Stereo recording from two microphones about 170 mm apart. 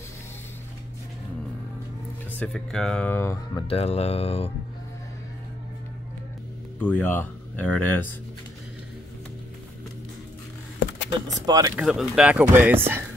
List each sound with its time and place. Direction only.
2.3 s speech: 5° left (ahead or behind)
3.6 s speech: 35° left (ahead or behind)
6.8 s speech: 10° left (ahead or behind)
11.1 s speech: 25° right (ahead or behind)
11.7 s speech: 5° right (ahead or behind)